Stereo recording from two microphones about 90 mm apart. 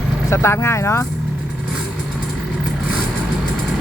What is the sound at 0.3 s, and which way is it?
Speech, 30° left (ahead or behind).